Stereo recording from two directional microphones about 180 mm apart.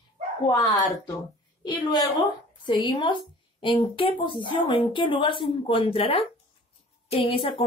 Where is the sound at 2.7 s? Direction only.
25° left (ahead or behind).